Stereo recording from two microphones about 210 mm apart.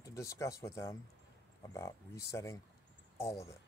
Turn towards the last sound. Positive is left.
turn(degrees=15)  # may be behind; listen again after turning